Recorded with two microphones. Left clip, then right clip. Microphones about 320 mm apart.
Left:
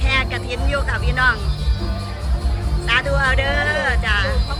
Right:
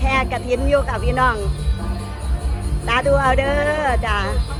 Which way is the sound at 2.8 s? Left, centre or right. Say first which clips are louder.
Right 2 dB; centre.